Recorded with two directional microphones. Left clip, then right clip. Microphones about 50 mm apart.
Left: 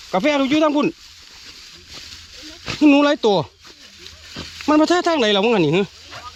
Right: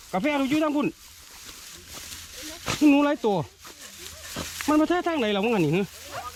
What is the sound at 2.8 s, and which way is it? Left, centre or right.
Speech, right.